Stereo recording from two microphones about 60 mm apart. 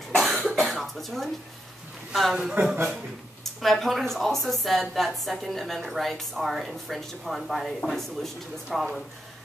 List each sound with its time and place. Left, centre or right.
0.1 s cough: centre
2.6 s a man's voice: right
3.6 s a woman's voice: centre